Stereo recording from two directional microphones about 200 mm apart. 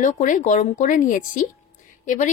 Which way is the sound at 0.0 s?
40° left (ahead or behind).